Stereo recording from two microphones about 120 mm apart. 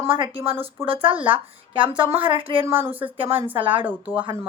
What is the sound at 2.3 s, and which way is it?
Speech, 50° right (ahead or behind).